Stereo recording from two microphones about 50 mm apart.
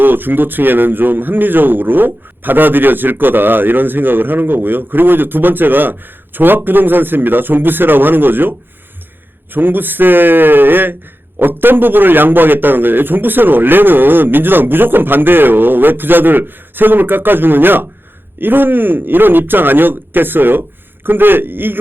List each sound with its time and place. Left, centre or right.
0.0 s a man's voice: right